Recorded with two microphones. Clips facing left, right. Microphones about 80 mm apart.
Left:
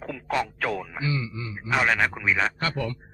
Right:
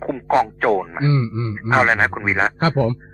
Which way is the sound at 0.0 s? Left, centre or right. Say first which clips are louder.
Right 10 dB; right.